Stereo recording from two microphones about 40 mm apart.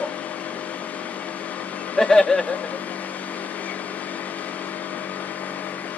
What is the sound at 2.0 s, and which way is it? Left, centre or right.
Speech, centre.